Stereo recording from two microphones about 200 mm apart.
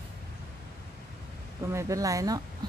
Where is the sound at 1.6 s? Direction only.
15° right (ahead or behind).